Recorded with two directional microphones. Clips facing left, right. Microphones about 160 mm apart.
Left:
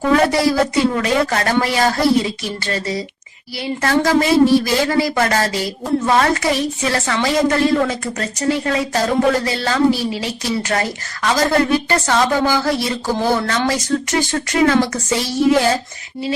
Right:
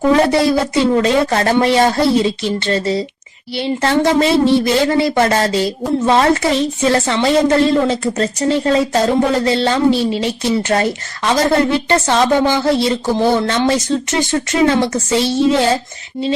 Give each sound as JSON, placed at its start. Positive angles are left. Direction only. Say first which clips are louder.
{"t": 0.1, "sound": "speech", "louder": "right 1 dB", "side_deg": -25}